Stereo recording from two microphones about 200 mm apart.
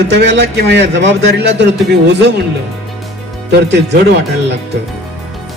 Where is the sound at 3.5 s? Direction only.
60° right (ahead or behind).